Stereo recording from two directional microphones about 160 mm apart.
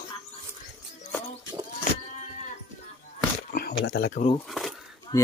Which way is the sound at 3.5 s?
80° left.